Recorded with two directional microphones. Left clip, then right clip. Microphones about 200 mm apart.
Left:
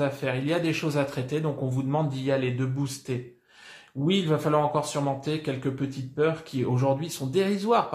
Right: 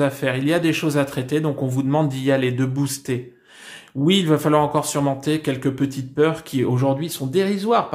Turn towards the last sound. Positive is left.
turn(degrees=-25)  # may be behind; listen again after turning